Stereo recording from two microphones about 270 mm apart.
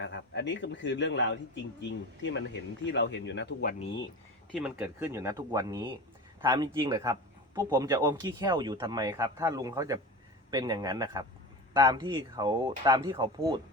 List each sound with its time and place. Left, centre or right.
0.0 s a man's voice: left
4.5 s speech: centre